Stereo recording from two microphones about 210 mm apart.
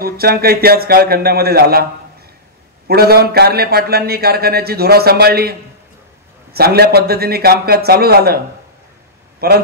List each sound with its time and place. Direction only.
0.0 s a man's voice: 45° right (ahead or behind)
2.9 s a man's voice: 50° right (ahead or behind)
9.4 s a man's voice: 50° right (ahead or behind)